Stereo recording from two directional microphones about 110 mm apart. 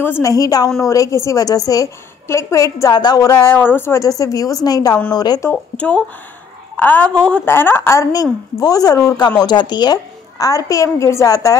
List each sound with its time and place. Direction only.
0.2 s a woman's voice: 35° left (ahead or behind)
2.9 s a woman's voice: 40° left (ahead or behind)
3.4 s a woman's voice: 20° left (ahead or behind); by 5.4 s 40° left (ahead or behind)
5.8 s a woman's voice: 10° left (ahead or behind)
7.4 s a woman's voice: 20° left (ahead or behind)